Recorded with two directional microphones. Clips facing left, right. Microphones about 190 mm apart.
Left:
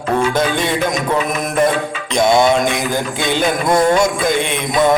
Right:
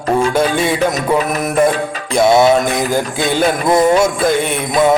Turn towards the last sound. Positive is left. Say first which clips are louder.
# right 2 dB
turn(degrees=-5)  # may be behind; listen again after turning